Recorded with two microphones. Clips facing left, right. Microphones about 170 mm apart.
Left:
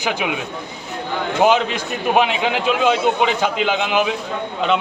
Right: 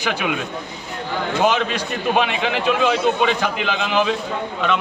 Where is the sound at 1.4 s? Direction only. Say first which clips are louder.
Left 4 dB; 20° left (ahead or behind).